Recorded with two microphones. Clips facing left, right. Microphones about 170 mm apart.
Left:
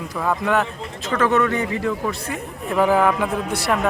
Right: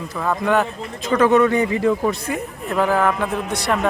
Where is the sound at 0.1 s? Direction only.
5° left (ahead or behind).